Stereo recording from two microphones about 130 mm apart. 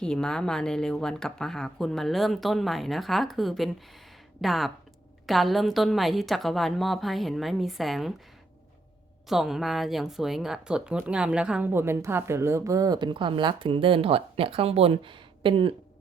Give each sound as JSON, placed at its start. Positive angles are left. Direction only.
{"t": 0.0, "sound": "speech", "side_deg": 5}
{"t": 9.3, "sound": "speech", "side_deg": -5}